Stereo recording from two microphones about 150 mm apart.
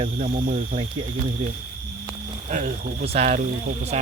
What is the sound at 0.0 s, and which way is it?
Speech, 50° right (ahead or behind).